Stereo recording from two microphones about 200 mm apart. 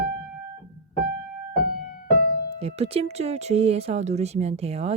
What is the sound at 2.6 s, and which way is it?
Speech, 30° right (ahead or behind).